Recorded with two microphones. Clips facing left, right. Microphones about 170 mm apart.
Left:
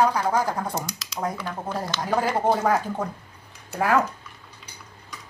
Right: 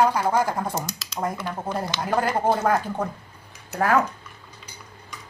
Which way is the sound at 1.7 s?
15° right (ahead or behind).